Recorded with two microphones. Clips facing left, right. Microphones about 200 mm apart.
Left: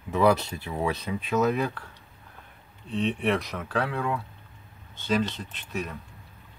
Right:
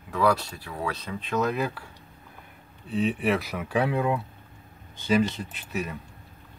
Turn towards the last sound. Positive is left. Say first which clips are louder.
# right 2 dB
turn(degrees=-5)  # may be behind; listen again after turning